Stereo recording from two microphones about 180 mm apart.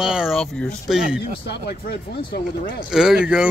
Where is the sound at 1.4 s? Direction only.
65° left (ahead or behind).